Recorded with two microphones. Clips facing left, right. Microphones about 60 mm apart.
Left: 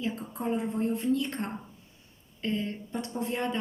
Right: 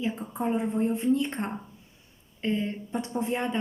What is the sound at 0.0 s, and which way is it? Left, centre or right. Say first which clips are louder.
A woman's voice: right 3 dB; right.